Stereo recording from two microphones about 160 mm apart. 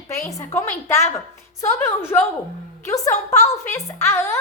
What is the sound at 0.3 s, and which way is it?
A woman's voice, 20° left (ahead or behind).